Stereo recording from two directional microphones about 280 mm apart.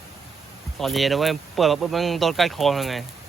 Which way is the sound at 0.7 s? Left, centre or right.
Centre.